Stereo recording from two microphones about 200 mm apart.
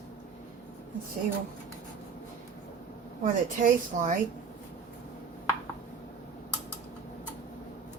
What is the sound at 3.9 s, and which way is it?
Speech, 40° right (ahead or behind).